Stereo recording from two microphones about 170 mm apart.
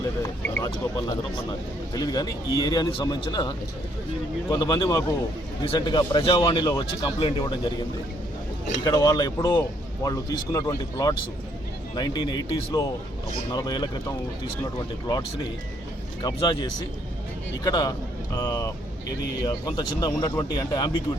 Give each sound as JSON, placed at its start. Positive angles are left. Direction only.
{"t": 0.5, "sound": "speech", "side_deg": 20}
{"t": 4.5, "sound": "speech", "side_deg": 25}
{"t": 16.2, "sound": "speech", "side_deg": 25}